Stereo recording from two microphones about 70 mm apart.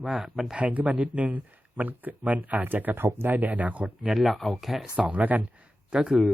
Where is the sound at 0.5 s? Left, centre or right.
Right.